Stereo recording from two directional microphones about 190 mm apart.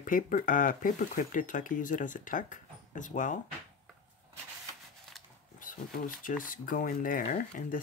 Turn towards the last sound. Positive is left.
turn(degrees=45)  # may be behind; listen again after turning